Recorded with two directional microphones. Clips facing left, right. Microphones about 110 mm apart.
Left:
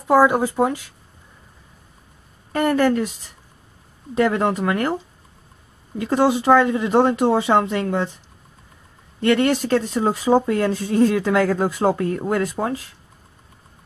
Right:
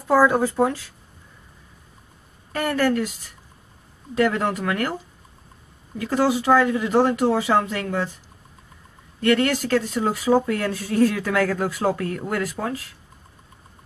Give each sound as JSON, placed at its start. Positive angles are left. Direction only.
{"t": 0.0, "sound": "speech", "side_deg": 15}
{"t": 2.5, "sound": "speech", "side_deg": 20}
{"t": 4.1, "sound": "speech", "side_deg": 20}
{"t": 9.2, "sound": "speech", "side_deg": 20}